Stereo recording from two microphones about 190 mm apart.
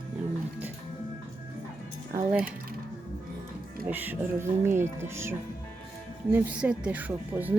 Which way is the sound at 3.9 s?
10° right (ahead or behind).